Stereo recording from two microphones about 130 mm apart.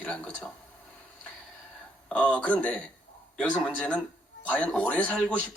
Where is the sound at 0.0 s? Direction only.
10° left (ahead or behind).